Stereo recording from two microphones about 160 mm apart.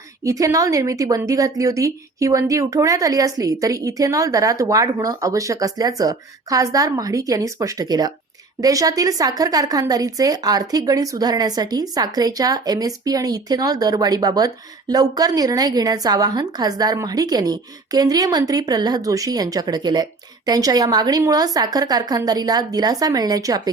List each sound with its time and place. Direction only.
0.3 s a woman's voice: 20° right (ahead or behind)